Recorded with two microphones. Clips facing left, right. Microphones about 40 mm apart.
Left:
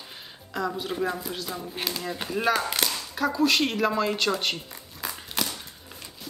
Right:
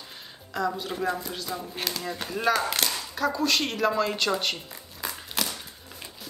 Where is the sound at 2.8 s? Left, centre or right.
Centre.